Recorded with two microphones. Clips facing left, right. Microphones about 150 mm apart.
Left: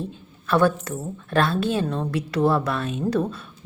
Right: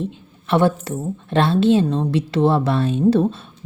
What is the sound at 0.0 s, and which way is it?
A woman's voice, 25° right (ahead or behind).